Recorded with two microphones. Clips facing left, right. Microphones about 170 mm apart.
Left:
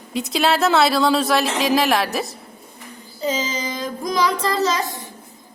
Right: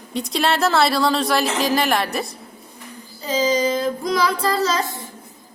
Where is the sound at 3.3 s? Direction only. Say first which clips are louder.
Right 4 dB; 35° right (ahead or behind).